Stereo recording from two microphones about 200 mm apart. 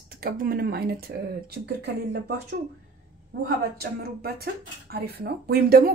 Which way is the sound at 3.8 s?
50° right (ahead or behind).